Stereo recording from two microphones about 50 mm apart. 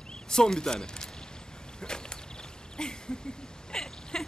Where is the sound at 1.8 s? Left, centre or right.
Centre.